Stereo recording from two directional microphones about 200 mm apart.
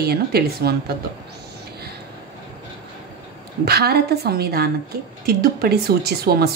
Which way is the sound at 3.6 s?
50° right (ahead or behind).